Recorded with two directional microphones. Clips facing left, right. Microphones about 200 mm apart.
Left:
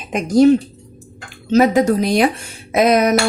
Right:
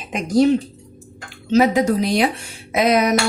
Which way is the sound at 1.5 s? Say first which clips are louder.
Left 2 dB; 45° left (ahead or behind).